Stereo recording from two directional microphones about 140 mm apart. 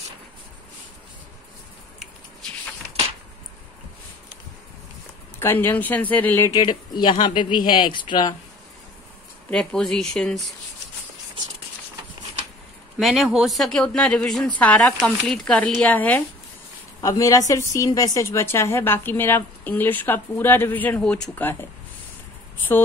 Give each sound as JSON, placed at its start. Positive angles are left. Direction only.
{"t": 5.4, "sound": "a woman's voice", "side_deg": 15}
{"t": 6.6, "sound": "speech", "side_deg": 35}
{"t": 9.5, "sound": "a woman's voice", "side_deg": 5}
{"t": 13.0, "sound": "a woman's voice", "side_deg": 0}
{"t": 17.0, "sound": "a woman's voice", "side_deg": 25}